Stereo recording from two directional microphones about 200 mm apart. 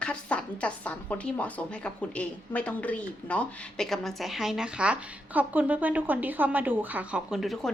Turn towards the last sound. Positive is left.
turn(degrees=0)  # may be behind; listen again after turning